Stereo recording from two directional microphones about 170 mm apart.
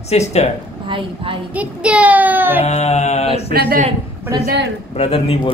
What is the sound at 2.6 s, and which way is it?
Speech, 40° left (ahead or behind).